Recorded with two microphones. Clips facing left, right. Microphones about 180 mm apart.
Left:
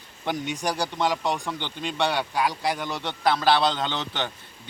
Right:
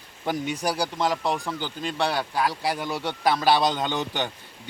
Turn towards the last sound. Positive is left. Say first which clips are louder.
# right 2 dB
turn(degrees=-10)  # may be behind; listen again after turning